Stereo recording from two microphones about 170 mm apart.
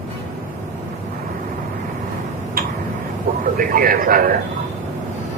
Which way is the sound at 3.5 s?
60° right (ahead or behind).